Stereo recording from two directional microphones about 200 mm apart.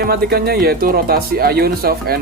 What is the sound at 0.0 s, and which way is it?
Speech, 50° right (ahead or behind).